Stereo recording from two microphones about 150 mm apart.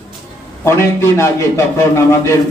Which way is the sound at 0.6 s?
15° left (ahead or behind).